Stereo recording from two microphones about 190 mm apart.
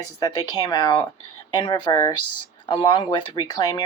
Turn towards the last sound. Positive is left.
turn(degrees=20)  # may be behind; listen again after turning